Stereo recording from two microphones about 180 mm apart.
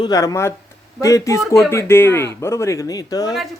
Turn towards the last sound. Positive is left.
turn(degrees=20)  # may be behind; listen again after turning